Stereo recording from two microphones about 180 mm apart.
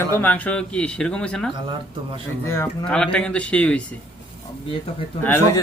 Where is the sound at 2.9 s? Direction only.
5° left (ahead or behind).